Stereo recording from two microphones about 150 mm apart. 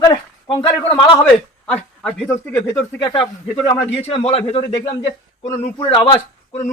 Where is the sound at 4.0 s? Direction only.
40° left (ahead or behind).